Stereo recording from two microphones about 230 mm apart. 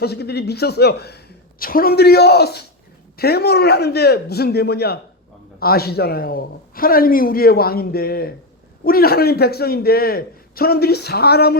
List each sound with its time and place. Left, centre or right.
0.0 s a man's voice: left